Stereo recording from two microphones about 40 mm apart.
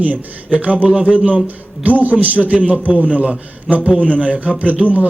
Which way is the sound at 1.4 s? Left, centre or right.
Right.